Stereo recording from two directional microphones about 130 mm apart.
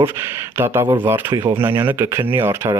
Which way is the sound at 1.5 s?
15° right (ahead or behind).